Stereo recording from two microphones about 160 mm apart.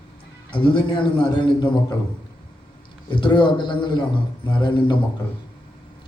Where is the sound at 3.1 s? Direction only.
30° left (ahead or behind).